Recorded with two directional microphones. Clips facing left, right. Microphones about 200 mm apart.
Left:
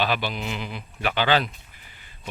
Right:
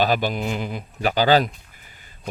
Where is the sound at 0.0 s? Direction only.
45° right (ahead or behind).